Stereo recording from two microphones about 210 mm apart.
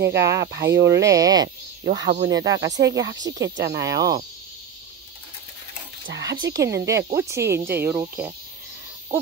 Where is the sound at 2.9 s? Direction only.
15° right (ahead or behind).